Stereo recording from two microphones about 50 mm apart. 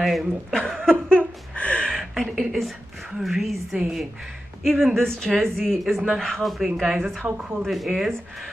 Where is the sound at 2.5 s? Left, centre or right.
Centre.